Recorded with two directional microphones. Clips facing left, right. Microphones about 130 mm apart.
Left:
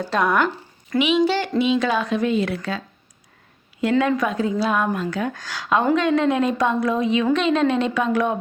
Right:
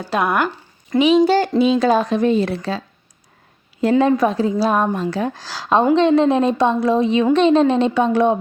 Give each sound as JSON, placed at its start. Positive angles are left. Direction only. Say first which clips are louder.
{"t": 0.1, "sound": "speech", "louder": "right 2 dB", "side_deg": -10}
{"t": 0.9, "sound": "a woman's voice", "louder": "right 5 dB", "side_deg": -40}